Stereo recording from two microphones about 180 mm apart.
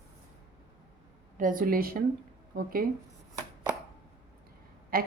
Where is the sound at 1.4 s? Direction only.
50° right (ahead or behind).